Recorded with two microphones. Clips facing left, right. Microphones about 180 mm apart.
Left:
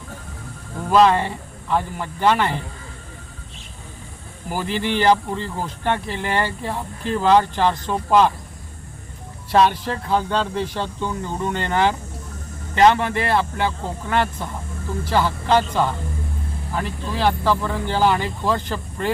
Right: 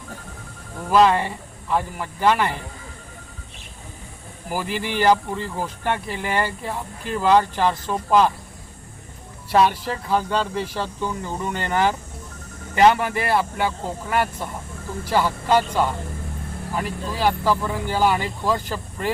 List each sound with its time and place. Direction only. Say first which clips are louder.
0.9 s speech: left 1 dB; 5° right (ahead or behind)
4.4 s speech: left 3 dB; 5° right (ahead or behind)
9.5 s speech: left 1 dB; 5° right (ahead or behind)